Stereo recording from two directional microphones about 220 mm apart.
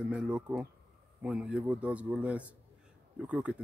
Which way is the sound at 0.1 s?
5° right (ahead or behind).